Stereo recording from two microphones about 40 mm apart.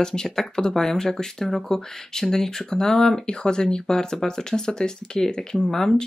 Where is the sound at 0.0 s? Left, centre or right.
Centre.